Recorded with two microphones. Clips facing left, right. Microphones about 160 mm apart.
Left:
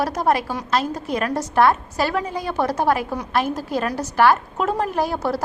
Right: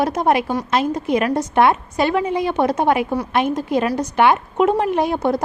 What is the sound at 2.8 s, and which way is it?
A woman's voice, centre (ahead or behind).